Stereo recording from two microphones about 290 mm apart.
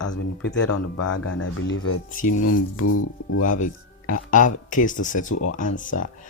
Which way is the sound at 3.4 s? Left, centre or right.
Left.